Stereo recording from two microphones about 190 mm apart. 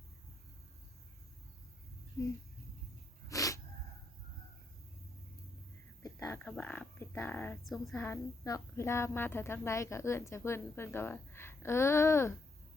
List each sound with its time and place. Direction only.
3.2 s sneeze: 15° left (ahead or behind)
6.0 s a woman's voice: 15° left (ahead or behind)